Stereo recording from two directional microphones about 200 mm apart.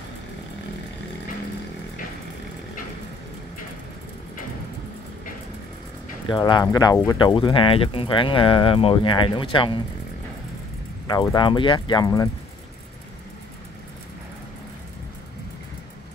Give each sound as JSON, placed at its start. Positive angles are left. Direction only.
{"t": 6.2, "sound": "speech", "side_deg": 20}
{"t": 11.1, "sound": "speech", "side_deg": 20}